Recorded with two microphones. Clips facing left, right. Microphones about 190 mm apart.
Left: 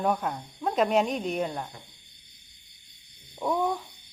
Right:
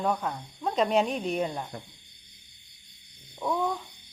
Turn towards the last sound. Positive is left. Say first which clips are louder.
# left 2 dB
turn(degrees=10)  # may be behind; listen again after turning